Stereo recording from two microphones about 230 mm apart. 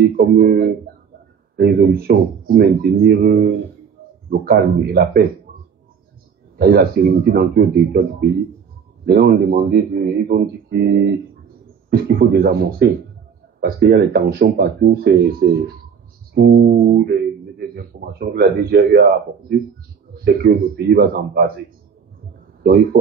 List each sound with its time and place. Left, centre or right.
0.1 s speech: right
3.3 s speech: right
4.3 s speech: right
6.6 s speech: right
20.4 s speech: right